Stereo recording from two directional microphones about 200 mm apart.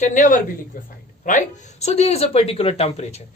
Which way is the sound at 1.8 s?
30° left (ahead or behind).